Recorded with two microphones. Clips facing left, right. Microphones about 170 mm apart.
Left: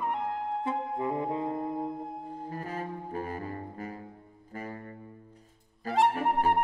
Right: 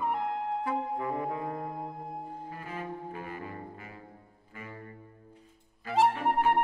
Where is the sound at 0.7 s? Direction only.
20° left (ahead or behind).